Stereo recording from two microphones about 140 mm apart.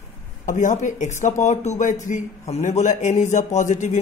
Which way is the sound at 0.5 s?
60° left (ahead or behind).